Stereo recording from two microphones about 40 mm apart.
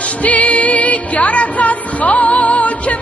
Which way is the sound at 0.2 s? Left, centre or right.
Left.